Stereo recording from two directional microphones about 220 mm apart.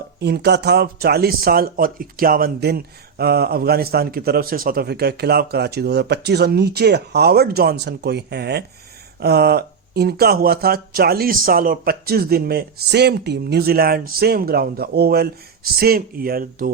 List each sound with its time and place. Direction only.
0.2 s speech: 50° right (ahead or behind)